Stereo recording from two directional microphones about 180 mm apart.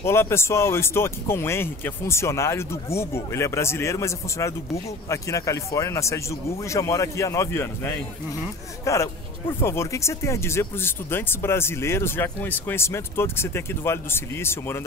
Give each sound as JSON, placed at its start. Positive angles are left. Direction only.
{"t": 0.0, "sound": "speech", "side_deg": 15}